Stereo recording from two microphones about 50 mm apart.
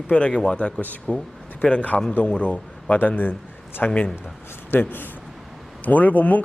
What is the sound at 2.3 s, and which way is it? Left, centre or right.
Speech, centre.